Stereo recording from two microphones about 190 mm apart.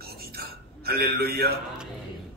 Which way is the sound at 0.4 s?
55° right (ahead or behind).